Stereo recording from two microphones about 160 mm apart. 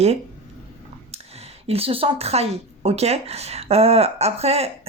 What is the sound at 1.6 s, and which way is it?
Speech, 35° right (ahead or behind).